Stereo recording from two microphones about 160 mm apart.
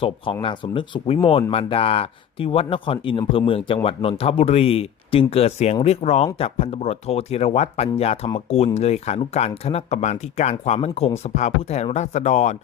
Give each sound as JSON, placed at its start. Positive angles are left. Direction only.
{"t": 0.4, "sound": "speech", "side_deg": 30}